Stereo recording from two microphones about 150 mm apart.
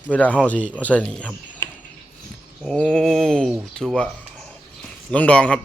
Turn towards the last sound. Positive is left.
turn(degrees=5)  # may be behind; listen again after turning